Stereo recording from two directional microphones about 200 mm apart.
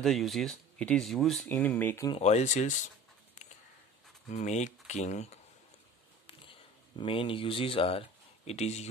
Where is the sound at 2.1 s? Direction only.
35° left (ahead or behind).